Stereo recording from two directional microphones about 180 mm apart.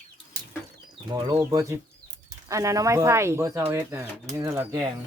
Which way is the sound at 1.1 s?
15° right (ahead or behind).